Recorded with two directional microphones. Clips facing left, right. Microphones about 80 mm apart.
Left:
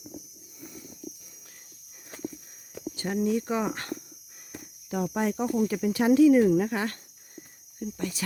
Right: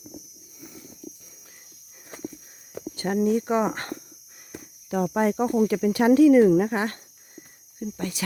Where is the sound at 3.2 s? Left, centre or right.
Right.